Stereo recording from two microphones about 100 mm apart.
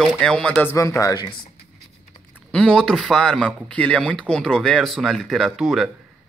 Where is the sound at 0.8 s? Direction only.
35° left (ahead or behind).